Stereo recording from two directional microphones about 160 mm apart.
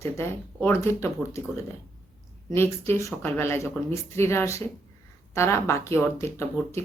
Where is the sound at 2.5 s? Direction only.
15° left (ahead or behind).